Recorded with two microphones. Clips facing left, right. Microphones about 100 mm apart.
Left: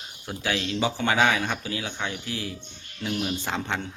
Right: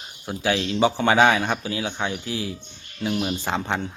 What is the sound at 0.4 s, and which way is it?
Speech, 25° right (ahead or behind).